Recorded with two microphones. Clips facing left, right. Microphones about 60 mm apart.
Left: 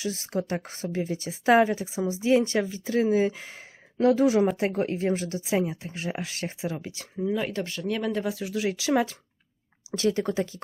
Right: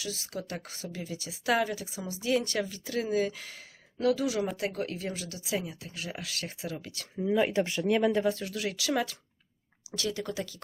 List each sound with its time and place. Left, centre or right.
0.0 s speech: left
7.3 s speech: centre
8.2 s speech: centre
8.5 s speech: centre